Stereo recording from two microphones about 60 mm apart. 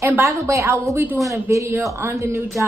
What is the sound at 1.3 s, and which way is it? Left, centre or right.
Speech, right.